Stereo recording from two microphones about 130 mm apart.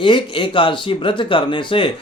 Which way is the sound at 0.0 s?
40° left (ahead or behind).